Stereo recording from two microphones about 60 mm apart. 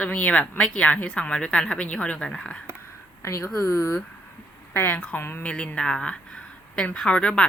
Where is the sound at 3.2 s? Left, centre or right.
Left.